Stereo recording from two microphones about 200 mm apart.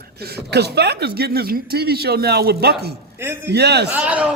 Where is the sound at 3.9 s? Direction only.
5° right (ahead or behind).